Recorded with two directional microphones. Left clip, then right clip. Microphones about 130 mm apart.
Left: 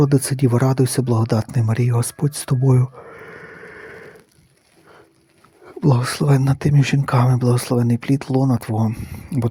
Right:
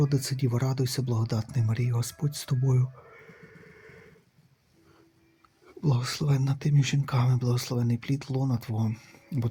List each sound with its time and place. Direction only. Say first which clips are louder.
0.0 s speech: left 12 dB; 60° left (ahead or behind)
1.7 s a sound: left 13 dB; 60° left (ahead or behind)
5.6 s speech: left 12 dB; 70° left (ahead or behind)
8.7 s speech: left 11 dB; 45° left (ahead or behind)